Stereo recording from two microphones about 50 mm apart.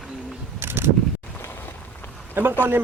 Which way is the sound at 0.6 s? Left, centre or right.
Right.